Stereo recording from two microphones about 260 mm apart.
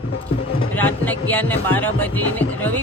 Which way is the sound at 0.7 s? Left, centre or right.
Centre.